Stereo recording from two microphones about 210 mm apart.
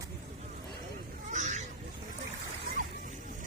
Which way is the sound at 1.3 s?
35° right (ahead or behind).